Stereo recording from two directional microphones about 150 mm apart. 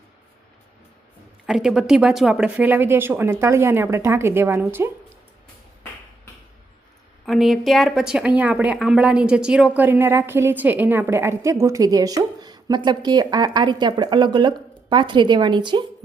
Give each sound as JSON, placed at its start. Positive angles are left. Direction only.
{"t": 1.5, "sound": "speech", "side_deg": -5}
{"t": 7.3, "sound": "speech", "side_deg": 0}